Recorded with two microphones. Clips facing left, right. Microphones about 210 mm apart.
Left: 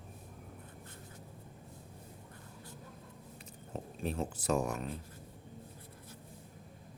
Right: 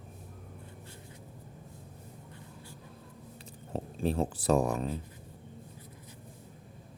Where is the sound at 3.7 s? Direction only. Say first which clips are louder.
Right 7 dB; 30° right (ahead or behind).